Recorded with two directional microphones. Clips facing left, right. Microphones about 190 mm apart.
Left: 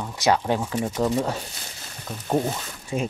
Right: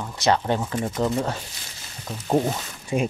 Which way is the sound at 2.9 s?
15° right (ahead or behind).